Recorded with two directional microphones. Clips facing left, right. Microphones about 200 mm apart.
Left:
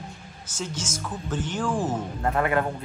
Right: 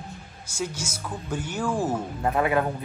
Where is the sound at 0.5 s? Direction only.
10° right (ahead or behind).